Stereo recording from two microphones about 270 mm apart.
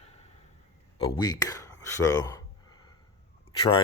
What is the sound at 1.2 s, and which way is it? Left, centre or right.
Speech, centre.